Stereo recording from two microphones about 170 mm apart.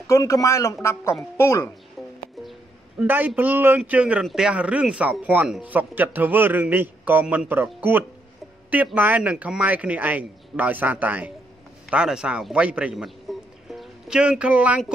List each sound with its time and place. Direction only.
0.0 s speech: 20° left (ahead or behind)
2.0 s music: centre (ahead or behind)
3.0 s a man's voice: 10° right (ahead or behind)